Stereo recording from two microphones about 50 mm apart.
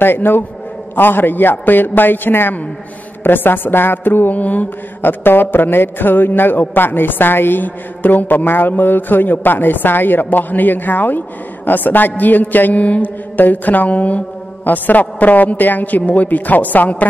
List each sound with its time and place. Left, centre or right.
0.0 s mantra: left
5.2 s a man's voice: left